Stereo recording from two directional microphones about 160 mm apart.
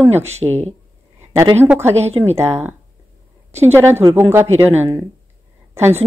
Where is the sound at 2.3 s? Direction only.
15° right (ahead or behind).